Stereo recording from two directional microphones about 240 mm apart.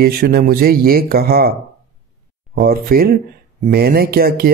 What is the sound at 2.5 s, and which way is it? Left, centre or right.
Speech, right.